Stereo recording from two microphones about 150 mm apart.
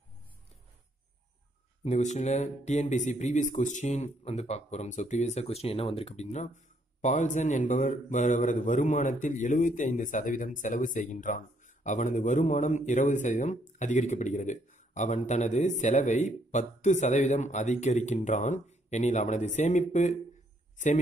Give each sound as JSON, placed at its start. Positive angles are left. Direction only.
{"t": 1.9, "sound": "speech", "side_deg": 50}